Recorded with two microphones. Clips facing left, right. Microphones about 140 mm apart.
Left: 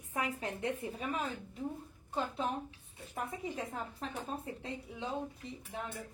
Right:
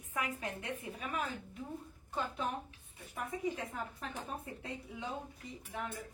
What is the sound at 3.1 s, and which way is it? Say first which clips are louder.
Speech: right 1 dB; 25° left (ahead or behind).